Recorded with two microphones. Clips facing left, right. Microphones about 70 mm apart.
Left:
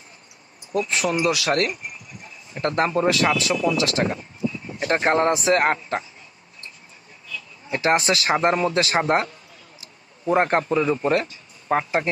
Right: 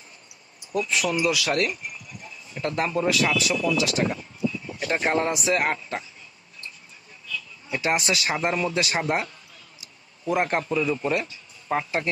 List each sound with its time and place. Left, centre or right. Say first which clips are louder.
0.7 s a man's voice: left 2 dB; left
1.5 s speech: left 3 dB; left
7.3 s a man's voice: left 2 dB; left